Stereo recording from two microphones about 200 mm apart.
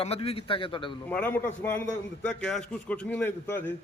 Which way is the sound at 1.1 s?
10° left (ahead or behind).